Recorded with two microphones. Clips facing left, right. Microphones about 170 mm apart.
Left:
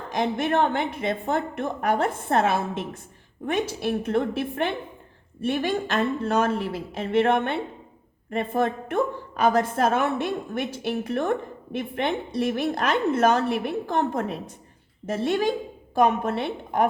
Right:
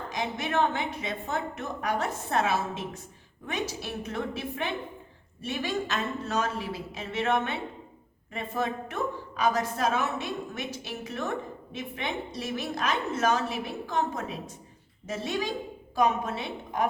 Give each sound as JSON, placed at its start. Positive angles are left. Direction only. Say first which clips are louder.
{"t": 0.1, "sound": "a woman's voice", "louder": "left 8 dB", "side_deg": 55}